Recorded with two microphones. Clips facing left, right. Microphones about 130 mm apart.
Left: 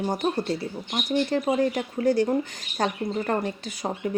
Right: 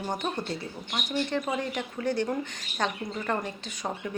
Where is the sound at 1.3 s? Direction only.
35° left (ahead or behind).